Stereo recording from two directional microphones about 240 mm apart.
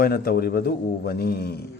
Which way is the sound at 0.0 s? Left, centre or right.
Left.